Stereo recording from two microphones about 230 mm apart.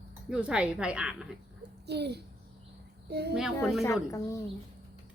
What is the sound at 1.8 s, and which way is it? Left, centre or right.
A child's voice, right.